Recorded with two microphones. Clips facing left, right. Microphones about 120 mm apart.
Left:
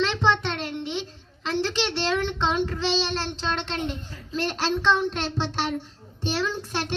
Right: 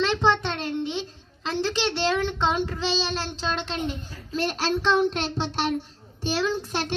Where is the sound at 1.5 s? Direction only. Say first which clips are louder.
Even; 15° right (ahead or behind).